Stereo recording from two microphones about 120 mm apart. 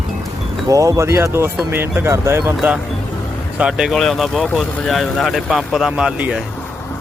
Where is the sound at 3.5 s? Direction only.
5° right (ahead or behind).